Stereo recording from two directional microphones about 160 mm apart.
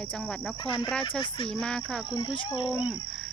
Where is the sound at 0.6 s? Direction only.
30° left (ahead or behind).